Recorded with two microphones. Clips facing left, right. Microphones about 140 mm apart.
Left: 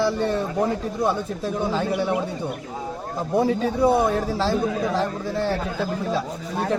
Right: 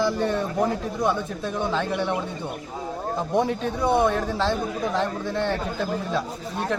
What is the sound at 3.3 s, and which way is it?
Speech, 5° left (ahead or behind).